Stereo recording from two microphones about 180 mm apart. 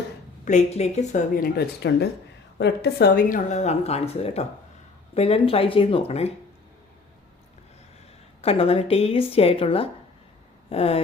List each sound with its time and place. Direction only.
0.4 s speech: 40° left (ahead or behind)
1.5 s speech: 65° left (ahead or behind); by 6.3 s 35° left (ahead or behind)
8.4 s speech: 35° left (ahead or behind)